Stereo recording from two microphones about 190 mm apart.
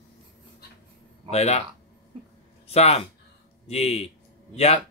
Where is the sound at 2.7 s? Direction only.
35° left (ahead or behind).